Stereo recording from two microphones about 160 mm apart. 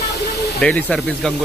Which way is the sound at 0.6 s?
10° left (ahead or behind).